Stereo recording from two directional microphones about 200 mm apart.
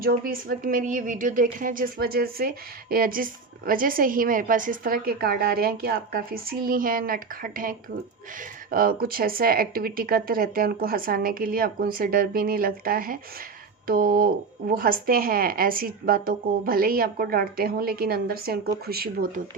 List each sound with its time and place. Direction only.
0.0 s speech: 45° right (ahead or behind)